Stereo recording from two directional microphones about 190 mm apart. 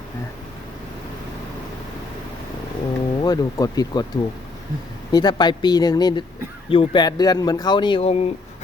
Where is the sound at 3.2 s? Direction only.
20° left (ahead or behind).